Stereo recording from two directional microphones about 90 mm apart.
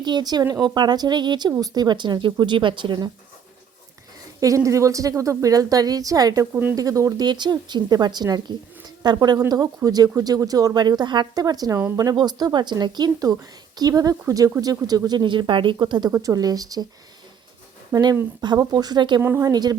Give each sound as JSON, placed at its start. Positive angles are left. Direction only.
{"t": 0.0, "sound": "speech", "side_deg": -50}
{"t": 4.4, "sound": "a woman's voice", "side_deg": -35}
{"t": 6.5, "sound": "speech", "side_deg": -25}
{"t": 6.7, "sound": "a woman's voice", "side_deg": -40}
{"t": 7.3, "sound": "speech", "side_deg": -55}
{"t": 16.1, "sound": "speech", "side_deg": -40}
{"t": 17.9, "sound": "a woman's voice", "side_deg": -40}